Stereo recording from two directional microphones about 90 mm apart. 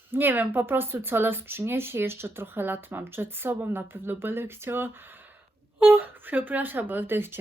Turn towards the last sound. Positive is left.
turn(degrees=-25)  # may be behind; listen again after turning